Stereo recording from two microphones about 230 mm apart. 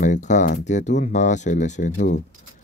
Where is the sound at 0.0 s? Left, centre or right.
Left.